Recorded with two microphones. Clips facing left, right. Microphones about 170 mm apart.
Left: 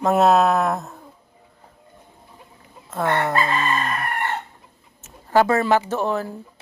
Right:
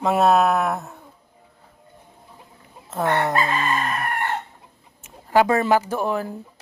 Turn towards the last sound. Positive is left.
turn(degrees=-15)  # may be behind; listen again after turning